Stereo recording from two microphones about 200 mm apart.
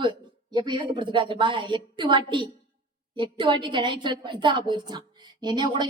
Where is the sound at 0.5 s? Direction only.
20° right (ahead or behind).